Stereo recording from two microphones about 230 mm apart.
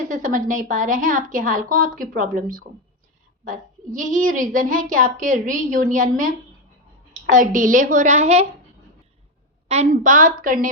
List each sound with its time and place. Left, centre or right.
0.1 s a woman's voice: right
7.3 s a woman's voice: right
9.6 s a woman's voice: right